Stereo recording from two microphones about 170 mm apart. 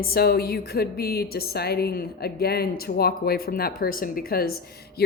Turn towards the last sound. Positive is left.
turn(degrees=60)  # may be behind; listen again after turning